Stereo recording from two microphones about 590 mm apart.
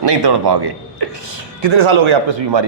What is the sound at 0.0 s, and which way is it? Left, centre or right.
A man's voice, right.